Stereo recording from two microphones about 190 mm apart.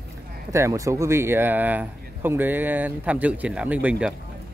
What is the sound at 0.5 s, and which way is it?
Speech, 15° right (ahead or behind).